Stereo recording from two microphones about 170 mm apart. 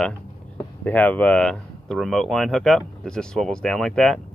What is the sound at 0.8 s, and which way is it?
Speech, 10° left (ahead or behind).